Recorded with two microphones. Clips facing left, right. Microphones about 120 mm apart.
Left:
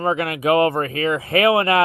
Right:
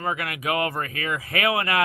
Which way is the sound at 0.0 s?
30° left (ahead or behind).